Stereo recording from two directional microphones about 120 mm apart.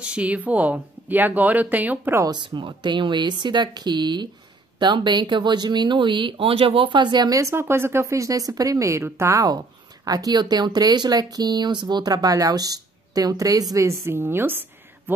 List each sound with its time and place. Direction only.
0.0 s speech: 10° right (ahead or behind)
2.2 s speech: 40° right (ahead or behind); by 15.1 s 15° right (ahead or behind)